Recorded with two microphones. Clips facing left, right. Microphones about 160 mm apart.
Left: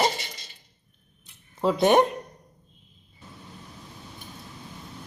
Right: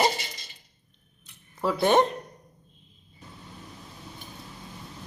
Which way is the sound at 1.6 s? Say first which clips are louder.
Left 2 dB; 20° left (ahead or behind).